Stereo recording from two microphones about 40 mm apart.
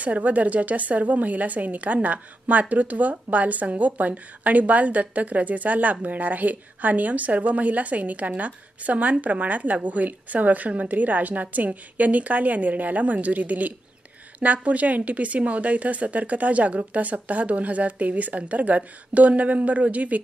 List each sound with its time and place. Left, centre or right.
0.0 s a woman's voice: right